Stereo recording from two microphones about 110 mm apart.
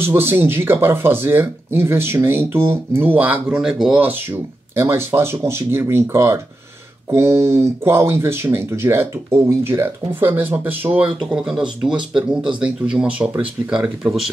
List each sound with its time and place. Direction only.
0.0 s speech: 20° right (ahead or behind)